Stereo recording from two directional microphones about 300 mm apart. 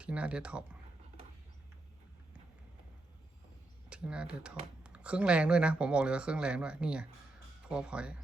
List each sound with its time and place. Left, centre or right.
0.0 s speech: centre
3.8 s speech: centre